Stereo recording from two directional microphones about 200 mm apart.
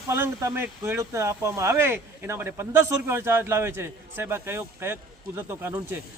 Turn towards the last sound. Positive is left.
turn(degrees=-15)  # may be behind; listen again after turning